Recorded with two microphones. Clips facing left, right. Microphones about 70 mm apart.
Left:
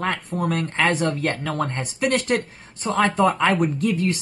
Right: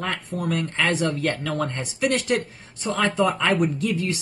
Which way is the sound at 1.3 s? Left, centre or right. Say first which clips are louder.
Left 1 dB; left.